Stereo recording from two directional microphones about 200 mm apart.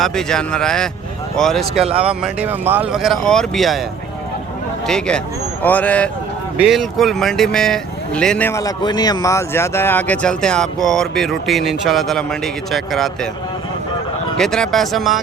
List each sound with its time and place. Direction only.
0.0 s speech: 5° left (ahead or behind)
1.7 s speech: 30° right (ahead or behind)
2.0 s speech: 5° right (ahead or behind)
4.9 s speech: 5° left (ahead or behind)
14.3 s speech: 5° left (ahead or behind)